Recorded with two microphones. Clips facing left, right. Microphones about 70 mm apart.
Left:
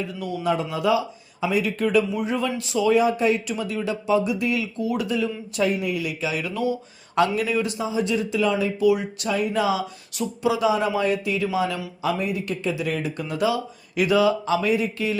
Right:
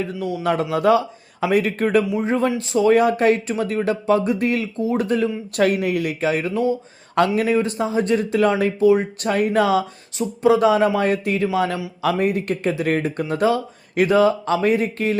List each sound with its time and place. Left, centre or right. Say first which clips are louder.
0.0 s speech: right 5 dB; right
0.4 s speech: right 5 dB; right
4.8 s speech: right 6 dB; right
5.0 s speech: right 4 dB; right
5.6 s speech: right 5 dB; right
8.8 s speech: right 5 dB; right
9.3 s speech: right 5 dB; right